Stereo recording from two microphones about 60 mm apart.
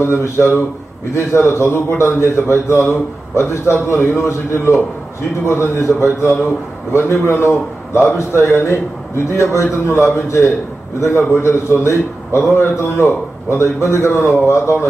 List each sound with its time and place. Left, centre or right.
0.0 s a man's voice: left